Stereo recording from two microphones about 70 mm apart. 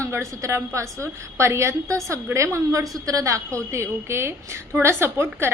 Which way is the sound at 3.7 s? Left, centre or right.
Right.